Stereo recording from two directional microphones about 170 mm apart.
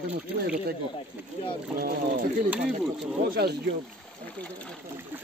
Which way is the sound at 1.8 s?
55° right (ahead or behind).